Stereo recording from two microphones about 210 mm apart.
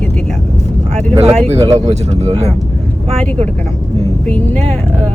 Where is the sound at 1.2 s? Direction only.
30° right (ahead or behind).